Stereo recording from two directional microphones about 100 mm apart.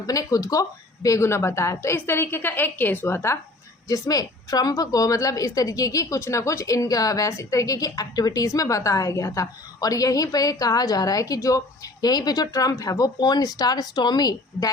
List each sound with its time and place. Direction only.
0.0 s a woman's voice: 35° left (ahead or behind)
3.8 s a woman's voice: 35° left (ahead or behind)